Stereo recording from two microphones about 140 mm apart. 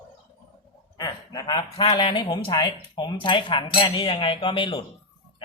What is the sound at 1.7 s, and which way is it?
Speech, 35° left (ahead or behind).